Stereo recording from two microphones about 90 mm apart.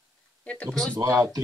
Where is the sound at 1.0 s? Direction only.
35° right (ahead or behind).